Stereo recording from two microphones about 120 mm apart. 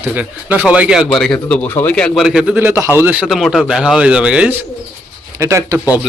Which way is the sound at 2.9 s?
15° right (ahead or behind).